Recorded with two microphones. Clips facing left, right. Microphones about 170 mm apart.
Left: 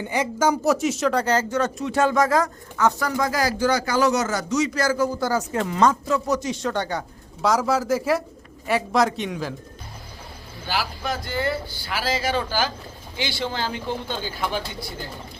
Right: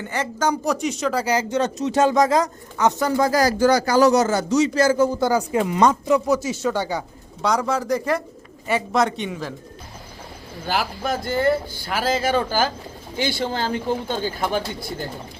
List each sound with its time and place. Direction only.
0.0 s a man's voice: 10° left (ahead or behind)
10.7 s speech: 50° right (ahead or behind)